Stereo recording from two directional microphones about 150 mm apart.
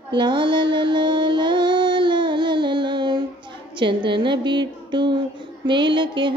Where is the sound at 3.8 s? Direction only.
30° right (ahead or behind).